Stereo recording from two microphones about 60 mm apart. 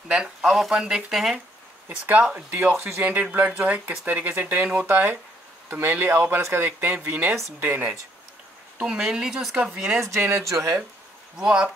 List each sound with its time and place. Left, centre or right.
0.1 s speech: centre
2.3 s speech: right
3.0 s speech: right
8.7 s speech: centre
10.1 s speech: right
11.3 s speech: centre